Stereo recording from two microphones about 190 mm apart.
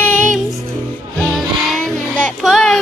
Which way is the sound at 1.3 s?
Centre (ahead or behind).